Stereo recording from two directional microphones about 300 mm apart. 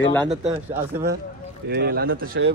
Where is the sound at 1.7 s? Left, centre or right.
Right.